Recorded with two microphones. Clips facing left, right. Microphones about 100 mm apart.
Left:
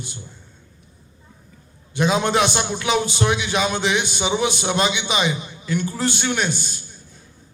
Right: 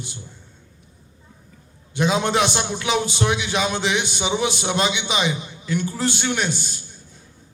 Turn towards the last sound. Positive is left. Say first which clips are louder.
# left 1 dB
turn(degrees=45)  # may be behind; listen again after turning